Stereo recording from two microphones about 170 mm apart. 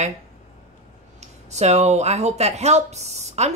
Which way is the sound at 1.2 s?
40° right (ahead or behind).